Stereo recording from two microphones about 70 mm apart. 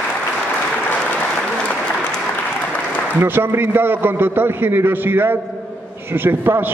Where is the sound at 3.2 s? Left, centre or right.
Right.